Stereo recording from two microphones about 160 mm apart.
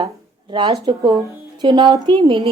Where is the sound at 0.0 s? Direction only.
30° right (ahead or behind).